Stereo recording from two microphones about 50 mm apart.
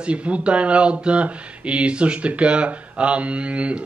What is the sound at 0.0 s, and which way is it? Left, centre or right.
Speech, right.